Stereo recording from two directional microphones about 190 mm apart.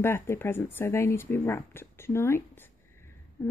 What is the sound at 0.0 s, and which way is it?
Speech, 10° left (ahead or behind).